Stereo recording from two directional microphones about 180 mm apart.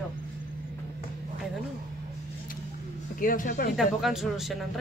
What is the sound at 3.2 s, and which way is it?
Speech, 50° left (ahead or behind).